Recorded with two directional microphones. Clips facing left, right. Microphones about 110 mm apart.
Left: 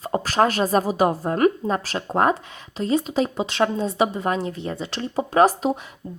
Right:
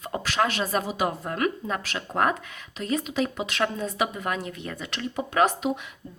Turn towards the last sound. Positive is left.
turn(degrees=35)  # may be behind; listen again after turning